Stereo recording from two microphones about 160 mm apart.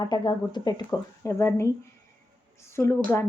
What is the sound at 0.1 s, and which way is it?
A woman's voice, 25° left (ahead or behind).